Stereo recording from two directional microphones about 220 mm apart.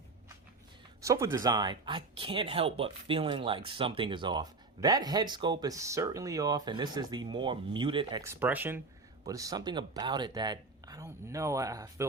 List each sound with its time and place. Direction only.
1.0 s speech: 15° right (ahead or behind)